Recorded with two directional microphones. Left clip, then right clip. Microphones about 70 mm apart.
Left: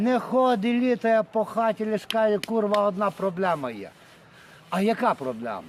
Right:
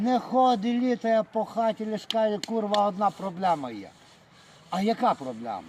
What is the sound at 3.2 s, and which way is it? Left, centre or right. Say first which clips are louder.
Speech: left 1 dB; left.